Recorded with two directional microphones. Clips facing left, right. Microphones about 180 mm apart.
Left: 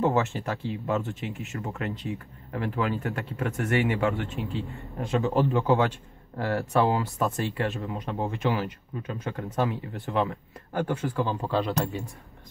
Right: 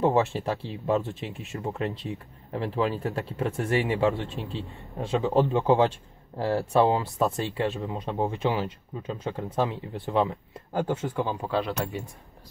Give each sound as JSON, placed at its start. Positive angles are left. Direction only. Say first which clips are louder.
{"t": 0.0, "sound": "a man's voice", "louder": "right 2 dB", "side_deg": -30}
{"t": 11.5, "sound": "speech", "louder": "left 1 dB", "side_deg": 0}